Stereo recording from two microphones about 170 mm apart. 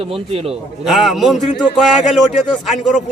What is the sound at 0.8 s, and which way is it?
Speech, centre (ahead or behind).